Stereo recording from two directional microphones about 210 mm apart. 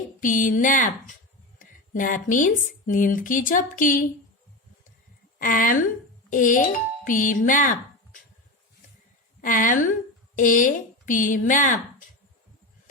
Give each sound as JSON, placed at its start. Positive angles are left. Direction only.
{"t": 0.2, "sound": "speech", "side_deg": 40}
{"t": 5.4, "sound": "a woman's voice", "side_deg": 40}
{"t": 9.4, "sound": "speech", "side_deg": 40}